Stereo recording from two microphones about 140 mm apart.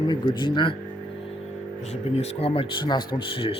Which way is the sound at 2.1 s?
45° left (ahead or behind).